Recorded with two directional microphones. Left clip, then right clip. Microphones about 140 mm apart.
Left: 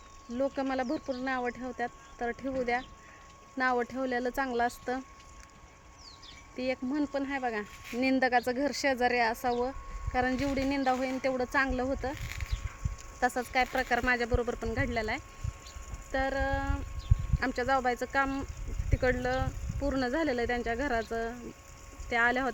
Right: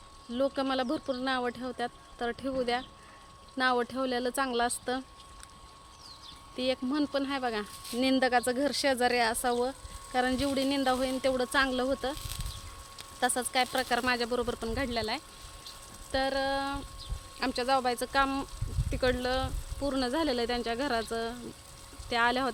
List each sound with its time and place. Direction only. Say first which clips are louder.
0.3 s speech: right 2 dB; centre (ahead or behind)
6.8 s speech: right 2 dB; 10° right (ahead or behind)
13.1 s speech: even; 5° left (ahead or behind)